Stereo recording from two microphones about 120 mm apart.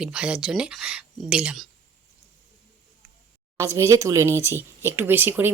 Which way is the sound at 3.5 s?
25° right (ahead or behind).